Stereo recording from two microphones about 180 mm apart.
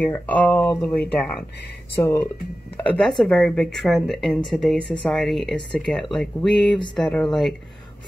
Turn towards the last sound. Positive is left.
turn(degrees=0)  # may be behind; listen again after turning